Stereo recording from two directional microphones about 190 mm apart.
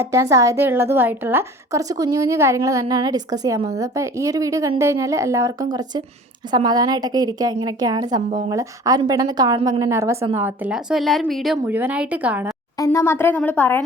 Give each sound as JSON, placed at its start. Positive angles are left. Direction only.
{"t": 0.0, "sound": "a woman's voice", "side_deg": -15}
{"t": 12.8, "sound": "a woman's voice", "side_deg": 15}